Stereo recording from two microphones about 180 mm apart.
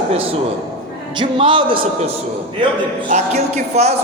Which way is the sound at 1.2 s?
25° right (ahead or behind).